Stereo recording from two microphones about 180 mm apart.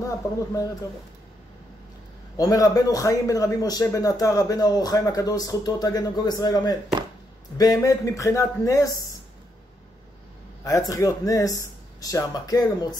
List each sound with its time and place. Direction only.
0.0 s speech: 20° left (ahead or behind)
2.3 s a man's voice: 20° left (ahead or behind)
10.6 s a man's voice: 20° left (ahead or behind)